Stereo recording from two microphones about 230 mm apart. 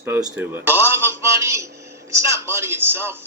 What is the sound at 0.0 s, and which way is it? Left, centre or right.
A man's voice, centre.